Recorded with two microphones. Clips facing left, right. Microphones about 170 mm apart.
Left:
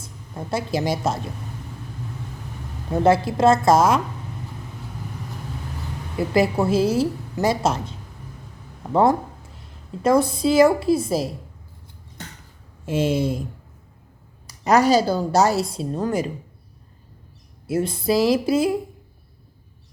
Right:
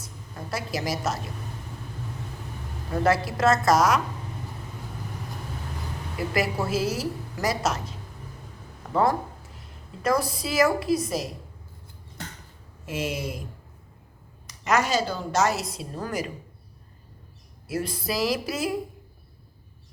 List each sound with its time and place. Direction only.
0.0 s a woman's voice: 25° left (ahead or behind)
2.9 s a woman's voice: 25° left (ahead or behind)
6.1 s a woman's voice: 25° left (ahead or behind)
12.8 s a woman's voice: 30° left (ahead or behind)
14.4 s a woman's voice: 35° left (ahead or behind)
17.7 s a woman's voice: 25° left (ahead or behind)